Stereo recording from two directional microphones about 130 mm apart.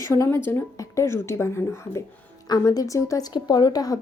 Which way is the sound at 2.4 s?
30° left (ahead or behind).